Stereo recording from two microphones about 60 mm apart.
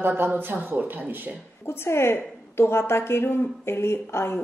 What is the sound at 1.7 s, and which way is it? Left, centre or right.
A woman's voice, left.